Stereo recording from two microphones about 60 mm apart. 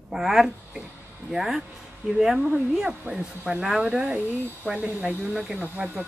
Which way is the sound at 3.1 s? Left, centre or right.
Centre.